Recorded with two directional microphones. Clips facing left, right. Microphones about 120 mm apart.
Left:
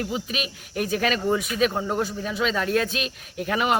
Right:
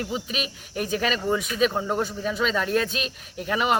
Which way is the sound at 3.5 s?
5° left (ahead or behind).